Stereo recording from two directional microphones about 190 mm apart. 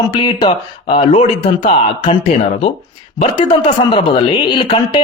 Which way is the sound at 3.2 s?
30° left (ahead or behind).